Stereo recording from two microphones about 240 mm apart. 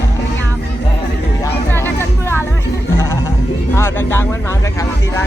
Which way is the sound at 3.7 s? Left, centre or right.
Centre.